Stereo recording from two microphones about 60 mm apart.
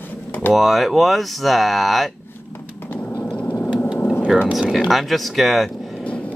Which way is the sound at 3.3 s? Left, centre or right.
Left.